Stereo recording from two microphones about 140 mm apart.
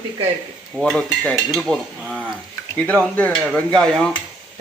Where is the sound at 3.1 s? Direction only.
10° left (ahead or behind).